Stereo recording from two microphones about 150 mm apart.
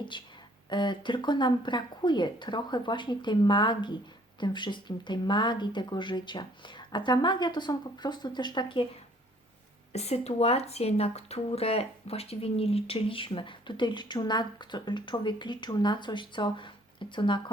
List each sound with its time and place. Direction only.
0.1 s speech: 30° left (ahead or behind)
9.9 s speech: 45° left (ahead or behind)